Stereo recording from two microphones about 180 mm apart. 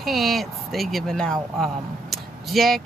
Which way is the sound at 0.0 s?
Centre (ahead or behind).